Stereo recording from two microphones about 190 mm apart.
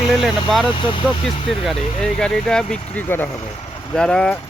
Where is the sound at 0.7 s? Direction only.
25° left (ahead or behind).